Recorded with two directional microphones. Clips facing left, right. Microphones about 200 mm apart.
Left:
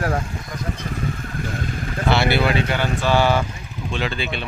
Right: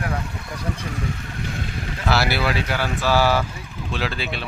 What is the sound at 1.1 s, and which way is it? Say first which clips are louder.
Vehicle: left 3 dB; 50° left (ahead or behind).